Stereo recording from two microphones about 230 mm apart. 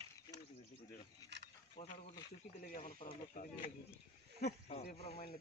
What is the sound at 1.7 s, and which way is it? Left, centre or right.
Speech, left.